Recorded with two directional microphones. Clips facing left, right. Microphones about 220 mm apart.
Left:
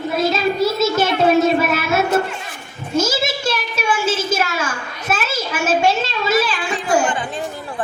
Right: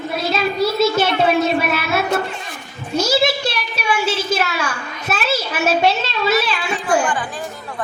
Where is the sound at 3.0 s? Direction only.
50° left (ahead or behind).